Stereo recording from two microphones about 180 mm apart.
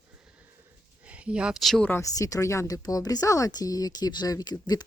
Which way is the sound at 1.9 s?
20° left (ahead or behind).